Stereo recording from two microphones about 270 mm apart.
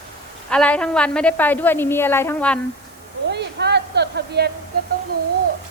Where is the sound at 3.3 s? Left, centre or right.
Right.